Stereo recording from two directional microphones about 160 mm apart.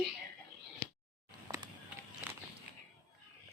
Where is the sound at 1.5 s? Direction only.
25° right (ahead or behind).